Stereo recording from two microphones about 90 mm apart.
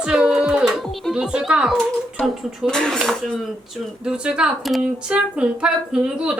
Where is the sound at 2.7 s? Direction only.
5° left (ahead or behind).